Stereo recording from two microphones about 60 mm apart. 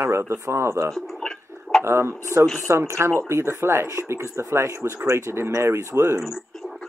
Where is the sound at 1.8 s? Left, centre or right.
Right.